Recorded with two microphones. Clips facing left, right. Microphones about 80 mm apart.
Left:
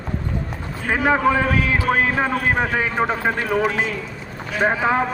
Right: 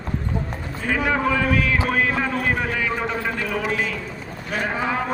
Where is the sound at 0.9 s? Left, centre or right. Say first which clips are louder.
Left 4 dB; left.